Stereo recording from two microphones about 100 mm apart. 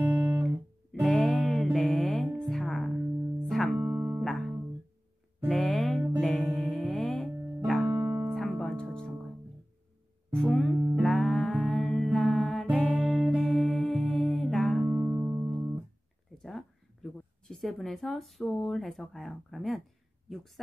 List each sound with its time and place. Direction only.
0.0 s music: 15° right (ahead or behind)
1.0 s music: centre (ahead or behind)
3.9 s music: 20° right (ahead or behind)
4.2 s guitar: centre (ahead or behind)
5.5 s music: 5° left (ahead or behind)
7.9 s music: 20° right (ahead or behind)
8.4 s music: 5° left (ahead or behind)
10.3 s music: 5° left (ahead or behind)
14.9 s music: 20° right (ahead or behind)
16.4 s a sound: 5° left (ahead or behind)
18.7 s speech: centre (ahead or behind)
20.3 s a sound: centre (ahead or behind)